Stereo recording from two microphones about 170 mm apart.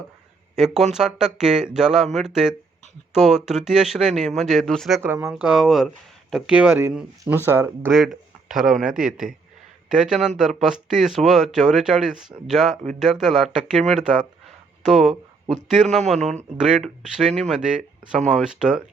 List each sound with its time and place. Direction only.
0.5 s speech: 5° right (ahead or behind)
5.0 s speech: 15° right (ahead or behind)
5.3 s speech: 5° right (ahead or behind)
7.9 s speech: centre (ahead or behind)